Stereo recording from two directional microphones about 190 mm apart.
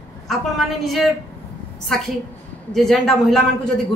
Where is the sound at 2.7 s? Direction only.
Centre (ahead or behind).